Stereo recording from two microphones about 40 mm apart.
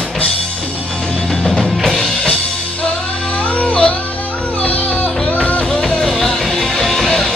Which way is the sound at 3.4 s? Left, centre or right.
Left.